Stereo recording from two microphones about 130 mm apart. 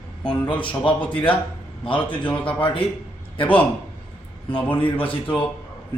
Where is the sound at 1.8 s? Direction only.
40° left (ahead or behind).